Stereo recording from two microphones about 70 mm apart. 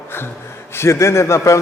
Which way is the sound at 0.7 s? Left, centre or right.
Left.